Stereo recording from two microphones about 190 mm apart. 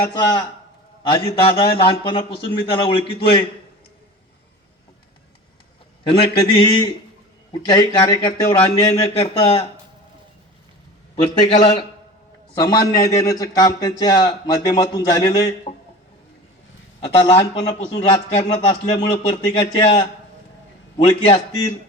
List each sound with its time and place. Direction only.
0.0 s a man's voice: 20° left (ahead or behind)
6.2 s a man's voice: 25° left (ahead or behind)
11.1 s a man's voice: 25° left (ahead or behind)
17.7 s a man's voice: 25° left (ahead or behind)